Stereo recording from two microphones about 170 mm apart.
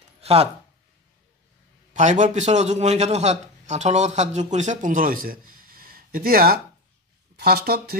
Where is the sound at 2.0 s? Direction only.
45° right (ahead or behind).